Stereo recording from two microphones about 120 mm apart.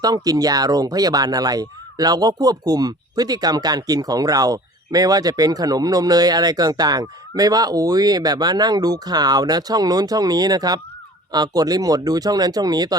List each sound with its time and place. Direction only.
0.0 s speech: 30° right (ahead or behind)